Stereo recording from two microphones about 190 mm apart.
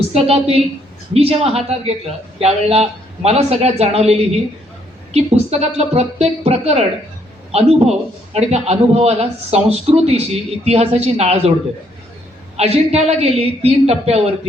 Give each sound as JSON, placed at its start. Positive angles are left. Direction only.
{"t": 0.1, "sound": "a man's voice", "side_deg": -30}
{"t": 12.5, "sound": "a man's voice", "side_deg": -35}